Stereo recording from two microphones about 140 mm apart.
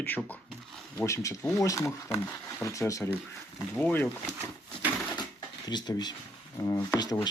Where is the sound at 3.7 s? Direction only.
10° left (ahead or behind).